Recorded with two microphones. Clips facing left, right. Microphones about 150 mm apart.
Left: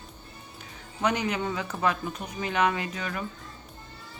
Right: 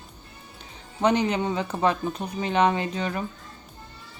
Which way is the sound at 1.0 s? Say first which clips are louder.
Right 5 dB; 25° right (ahead or behind).